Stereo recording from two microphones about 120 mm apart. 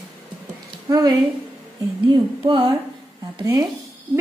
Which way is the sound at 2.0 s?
45° right (ahead or behind).